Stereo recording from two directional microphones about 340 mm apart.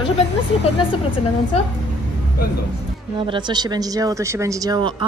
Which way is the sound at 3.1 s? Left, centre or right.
Centre.